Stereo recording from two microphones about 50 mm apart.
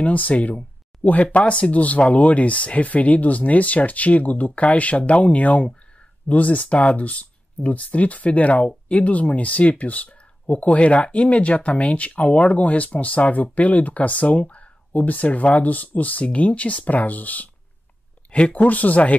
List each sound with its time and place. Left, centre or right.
0.0 s speech: left